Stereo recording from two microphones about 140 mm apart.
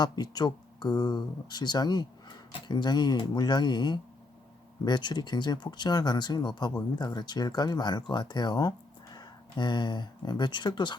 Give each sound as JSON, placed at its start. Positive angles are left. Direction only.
{"t": 0.0, "sound": "speech", "side_deg": 30}